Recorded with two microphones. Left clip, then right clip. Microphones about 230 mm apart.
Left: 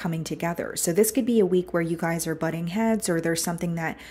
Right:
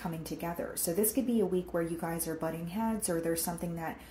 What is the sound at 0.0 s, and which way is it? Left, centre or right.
A woman's voice, left.